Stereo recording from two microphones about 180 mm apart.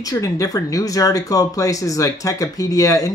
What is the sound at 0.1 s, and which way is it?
Speech, 20° left (ahead or behind).